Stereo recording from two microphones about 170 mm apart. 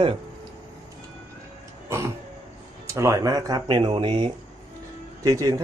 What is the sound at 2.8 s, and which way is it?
Speech, 15° right (ahead or behind).